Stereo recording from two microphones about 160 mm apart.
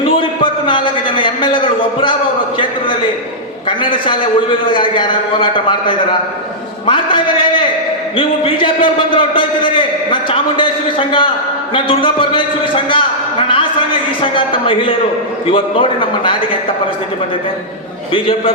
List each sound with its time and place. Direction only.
0.0 s a man's voice: 30° left (ahead or behind)
3.7 s a man's voice: 30° left (ahead or behind)
18.1 s a man's voice: 35° left (ahead or behind)